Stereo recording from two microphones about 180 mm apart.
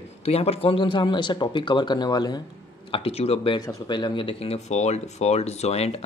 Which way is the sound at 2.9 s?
35° left (ahead or behind).